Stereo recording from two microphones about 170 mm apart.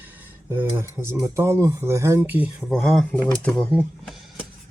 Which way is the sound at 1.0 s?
25° right (ahead or behind).